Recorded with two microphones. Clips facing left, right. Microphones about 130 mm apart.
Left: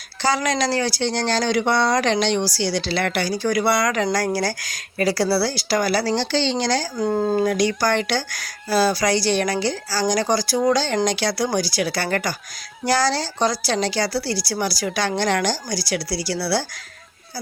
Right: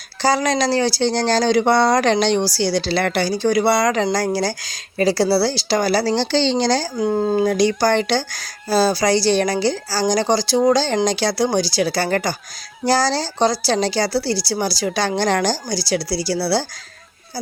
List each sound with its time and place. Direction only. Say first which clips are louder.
0.2 s speech: right 3 dB; 35° right (ahead or behind)
6.9 s speech: right 2 dB; 10° right (ahead or behind)
7.4 s speech: right 3 dB; 30° right (ahead or behind)